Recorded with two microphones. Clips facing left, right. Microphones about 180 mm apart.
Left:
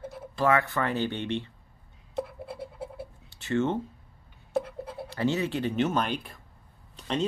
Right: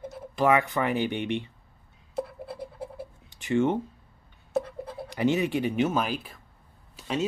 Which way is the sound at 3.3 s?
15° right (ahead or behind).